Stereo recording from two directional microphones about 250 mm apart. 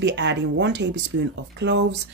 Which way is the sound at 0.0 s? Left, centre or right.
Right.